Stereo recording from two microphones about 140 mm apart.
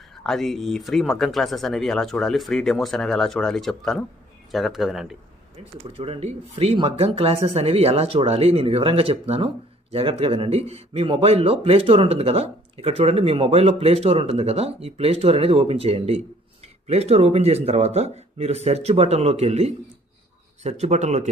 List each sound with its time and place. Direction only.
0.2 s speech: 5° left (ahead or behind)
5.9 s speech: 45° right (ahead or behind)